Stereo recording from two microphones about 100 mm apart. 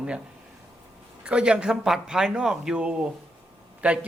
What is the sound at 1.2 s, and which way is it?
Speech, 10° right (ahead or behind).